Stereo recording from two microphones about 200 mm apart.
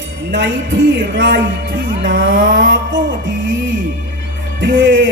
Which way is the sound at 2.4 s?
70° right (ahead or behind).